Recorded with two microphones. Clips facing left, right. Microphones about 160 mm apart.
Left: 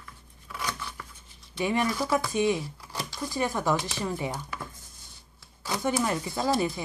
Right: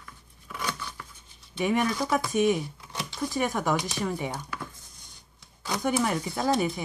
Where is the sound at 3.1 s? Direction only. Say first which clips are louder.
Right 2 dB; 20° right (ahead or behind).